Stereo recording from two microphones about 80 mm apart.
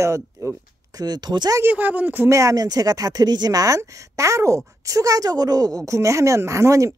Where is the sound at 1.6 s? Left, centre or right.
Right.